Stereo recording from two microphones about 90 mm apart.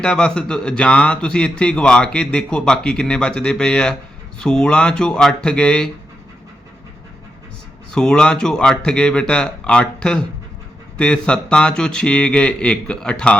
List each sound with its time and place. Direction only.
0.0 s a man's voice: 10° left (ahead or behind)
7.9 s a man's voice: 10° left (ahead or behind)